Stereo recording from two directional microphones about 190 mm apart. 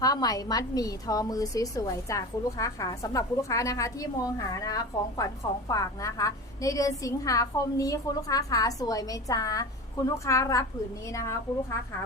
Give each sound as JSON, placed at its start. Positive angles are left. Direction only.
{"t": 0.0, "sound": "a woman's voice", "side_deg": 20}